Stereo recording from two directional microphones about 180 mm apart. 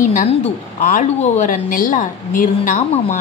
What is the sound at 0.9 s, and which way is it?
A woman's voice, 40° left (ahead or behind).